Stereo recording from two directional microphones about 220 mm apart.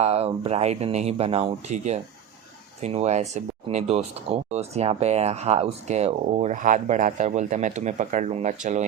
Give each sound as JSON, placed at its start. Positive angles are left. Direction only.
{"t": 0.0, "sound": "speech", "side_deg": -30}